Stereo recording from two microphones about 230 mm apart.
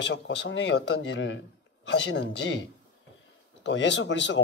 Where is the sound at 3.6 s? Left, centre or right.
Left.